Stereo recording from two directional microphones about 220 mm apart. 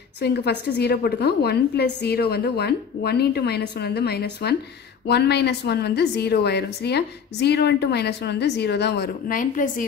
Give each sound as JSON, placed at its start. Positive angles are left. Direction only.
{"t": 0.2, "sound": "a woman's voice", "side_deg": 50}